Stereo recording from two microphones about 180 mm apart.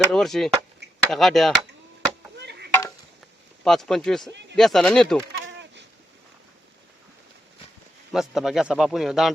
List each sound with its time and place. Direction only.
0.1 s speech: centre (ahead or behind)
2.4 s chop: 70° right (ahead or behind)
3.6 s speech: centre (ahead or behind)
5.4 s goat: 90° right
8.1 s speech: centre (ahead or behind)